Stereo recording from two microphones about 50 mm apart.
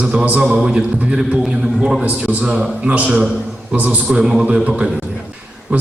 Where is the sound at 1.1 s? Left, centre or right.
Centre.